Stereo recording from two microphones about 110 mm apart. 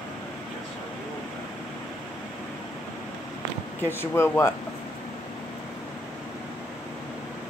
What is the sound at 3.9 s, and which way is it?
Speech, 20° left (ahead or behind).